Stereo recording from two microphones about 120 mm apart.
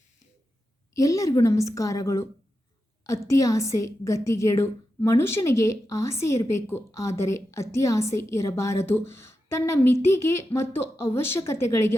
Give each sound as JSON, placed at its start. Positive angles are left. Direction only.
{"t": 0.9, "sound": "a woman's voice", "side_deg": 30}